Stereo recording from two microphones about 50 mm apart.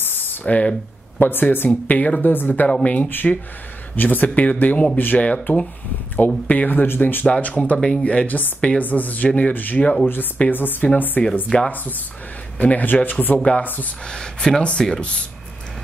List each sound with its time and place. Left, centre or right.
0.0 s a sound: left
1.2 s speech: left
1.7 s speech: left
7.4 s speech: left
8.8 s speech: left
11.5 s speech: left
12.5 s speech: left
14.0 s speech: centre